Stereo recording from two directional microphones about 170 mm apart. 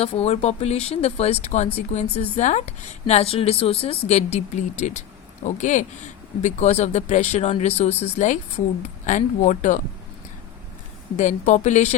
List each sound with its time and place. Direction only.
0.0 s speech: 35° left (ahead or behind)
11.2 s speech: 45° left (ahead or behind)